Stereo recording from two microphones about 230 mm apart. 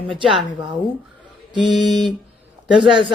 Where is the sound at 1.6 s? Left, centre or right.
Centre.